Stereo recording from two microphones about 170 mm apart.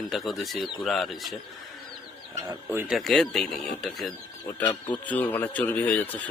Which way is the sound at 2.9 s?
Centre (ahead or behind).